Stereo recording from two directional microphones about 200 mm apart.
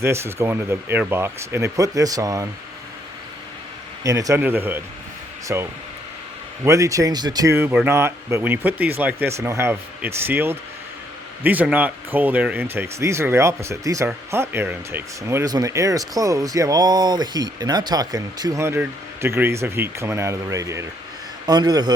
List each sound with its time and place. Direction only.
0.0 s speech: 15° right (ahead or behind)
4.0 s speech: 15° right (ahead or behind)
6.7 s a man's voice: 15° right (ahead or behind)